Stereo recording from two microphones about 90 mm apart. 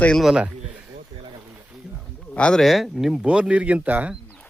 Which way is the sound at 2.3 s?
10° left (ahead or behind).